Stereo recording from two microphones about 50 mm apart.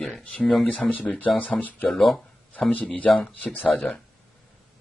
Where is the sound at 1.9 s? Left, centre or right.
Centre.